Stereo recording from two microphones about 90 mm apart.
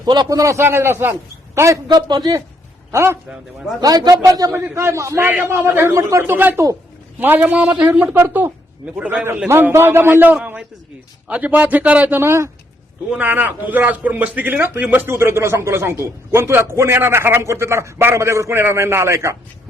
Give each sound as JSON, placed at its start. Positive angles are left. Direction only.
{"t": 0.0, "sound": "a man's voice", "side_deg": -50}
{"t": 0.3, "sound": "a man's voice", "side_deg": -35}
{"t": 1.9, "sound": "a man's voice", "side_deg": -55}
{"t": 2.9, "sound": "a man's voice", "side_deg": -30}
{"t": 3.8, "sound": "a man's voice", "side_deg": -45}
{"t": 4.5, "sound": "a man's voice", "side_deg": -30}
{"t": 9.5, "sound": "a man's voice", "side_deg": -25}
{"t": 13.1, "sound": "a man's voice", "side_deg": -20}